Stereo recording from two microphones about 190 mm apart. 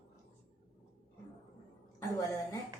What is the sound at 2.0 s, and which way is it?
Speech, 15° left (ahead or behind).